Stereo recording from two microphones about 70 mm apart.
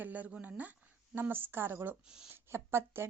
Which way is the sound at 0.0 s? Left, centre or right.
Right.